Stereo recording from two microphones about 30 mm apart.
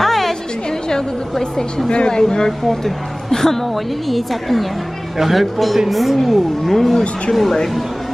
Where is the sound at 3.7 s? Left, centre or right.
Centre.